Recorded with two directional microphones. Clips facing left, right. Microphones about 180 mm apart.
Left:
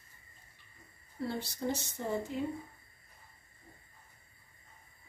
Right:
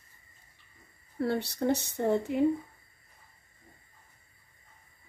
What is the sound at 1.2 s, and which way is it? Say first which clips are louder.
Speech: right 7 dB; 65° right (ahead or behind).